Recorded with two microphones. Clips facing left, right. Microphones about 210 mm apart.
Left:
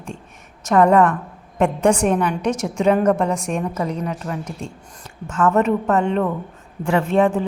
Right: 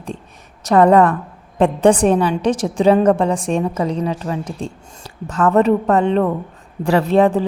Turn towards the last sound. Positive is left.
turn(degrees=-35)  # may be behind; listen again after turning